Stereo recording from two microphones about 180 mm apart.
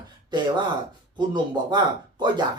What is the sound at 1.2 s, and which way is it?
Speech, 25° right (ahead or behind).